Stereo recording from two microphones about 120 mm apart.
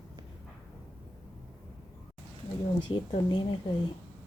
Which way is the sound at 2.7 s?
45° left (ahead or behind).